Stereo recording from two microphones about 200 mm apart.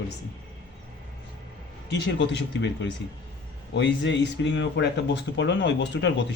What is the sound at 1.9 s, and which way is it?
Speech, 60° left (ahead or behind).